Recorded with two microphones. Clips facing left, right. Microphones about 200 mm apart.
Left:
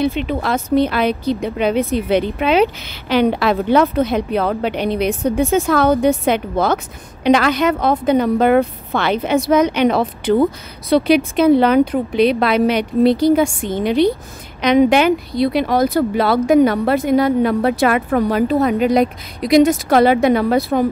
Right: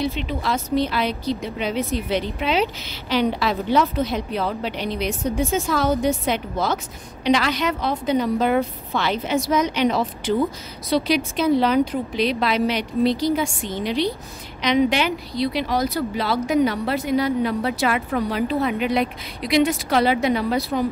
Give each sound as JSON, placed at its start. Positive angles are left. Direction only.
{"t": 0.0, "sound": "a woman's voice", "side_deg": 55}